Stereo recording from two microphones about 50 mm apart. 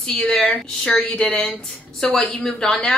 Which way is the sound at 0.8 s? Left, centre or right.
Centre.